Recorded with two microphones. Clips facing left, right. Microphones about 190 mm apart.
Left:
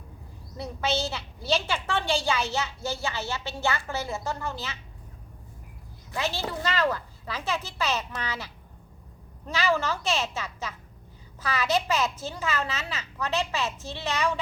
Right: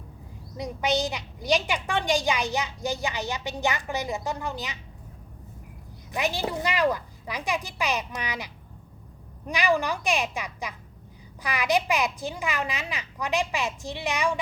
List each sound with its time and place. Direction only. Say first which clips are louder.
0.5 s a woman's voice: right 2 dB; 15° right (ahead or behind)
6.1 s a woman's voice: right 3 dB; 15° right (ahead or behind)
9.5 s a woman's voice: right 2 dB; 15° right (ahead or behind)